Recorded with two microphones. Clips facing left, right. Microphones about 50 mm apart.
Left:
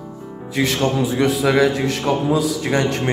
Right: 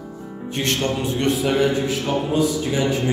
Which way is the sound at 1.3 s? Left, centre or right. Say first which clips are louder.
Left 1 dB; left.